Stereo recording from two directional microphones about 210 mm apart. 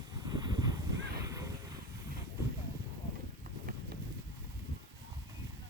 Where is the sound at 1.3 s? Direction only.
15° right (ahead or behind).